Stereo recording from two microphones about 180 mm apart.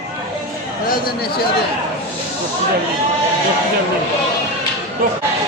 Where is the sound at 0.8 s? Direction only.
55° left (ahead or behind).